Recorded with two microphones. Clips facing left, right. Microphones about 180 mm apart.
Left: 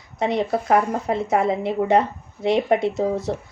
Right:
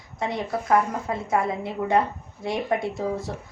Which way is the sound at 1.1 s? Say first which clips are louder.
Left 4 dB; 70° left (ahead or behind).